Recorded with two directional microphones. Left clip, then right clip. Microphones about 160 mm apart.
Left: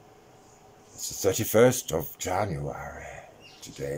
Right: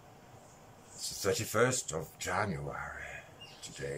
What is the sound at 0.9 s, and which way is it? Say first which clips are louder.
Speech: left 6 dB; 45° left (ahead or behind).